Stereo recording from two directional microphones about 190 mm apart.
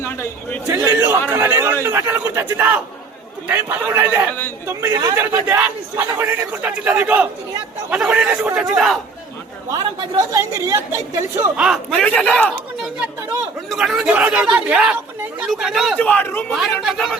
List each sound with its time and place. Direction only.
0.7 s a man's voice: 15° right (ahead or behind)
9.6 s a man's voice: 15° right (ahead or behind)
11.5 s speech: centre (ahead or behind)
16.6 s speech: centre (ahead or behind)